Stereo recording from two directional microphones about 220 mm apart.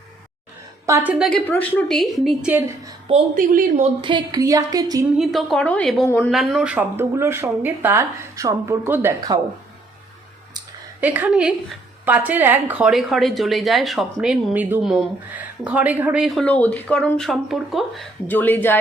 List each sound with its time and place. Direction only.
0.9 s a woman's voice: 10° right (ahead or behind)
3.3 s speech: 40° right (ahead or behind)
4.0 s speech: 20° right (ahead or behind)
5.1 s a woman's voice: centre (ahead or behind)
11.0 s a woman's voice: 10° right (ahead or behind); by 18.8 s 10° left (ahead or behind)